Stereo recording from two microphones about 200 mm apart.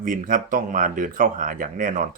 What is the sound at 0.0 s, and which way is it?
Speech, 40° right (ahead or behind).